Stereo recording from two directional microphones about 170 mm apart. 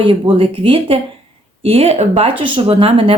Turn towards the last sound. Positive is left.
turn(degrees=-30)  # may be behind; listen again after turning